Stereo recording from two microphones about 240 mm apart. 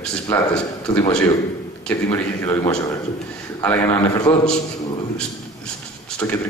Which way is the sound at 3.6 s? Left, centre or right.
Centre.